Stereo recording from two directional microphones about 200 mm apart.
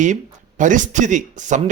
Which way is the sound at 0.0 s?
40° right (ahead or behind).